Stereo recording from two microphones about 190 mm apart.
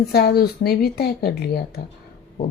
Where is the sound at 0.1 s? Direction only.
55° left (ahead or behind).